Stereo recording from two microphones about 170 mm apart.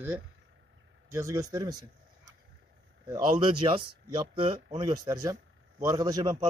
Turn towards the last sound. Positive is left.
turn(degrees=-25)  # may be behind; listen again after turning